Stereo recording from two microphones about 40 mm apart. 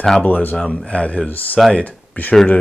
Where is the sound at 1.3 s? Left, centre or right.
Left.